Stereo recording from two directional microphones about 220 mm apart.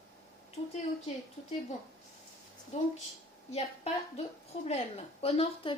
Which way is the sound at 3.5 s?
30° left (ahead or behind).